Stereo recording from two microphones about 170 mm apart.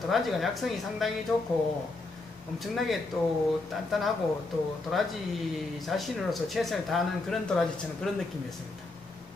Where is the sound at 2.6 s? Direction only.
Centre (ahead or behind).